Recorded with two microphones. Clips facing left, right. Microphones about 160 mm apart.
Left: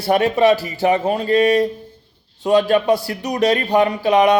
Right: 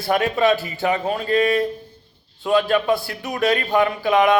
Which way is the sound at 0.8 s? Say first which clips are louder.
Left 5 dB; 20° left (ahead or behind).